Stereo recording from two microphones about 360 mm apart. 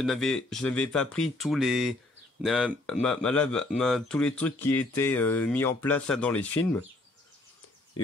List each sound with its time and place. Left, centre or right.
0.0 s speech: centre